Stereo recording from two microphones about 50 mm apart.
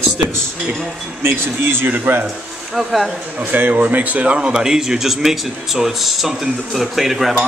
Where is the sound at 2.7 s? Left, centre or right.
Centre.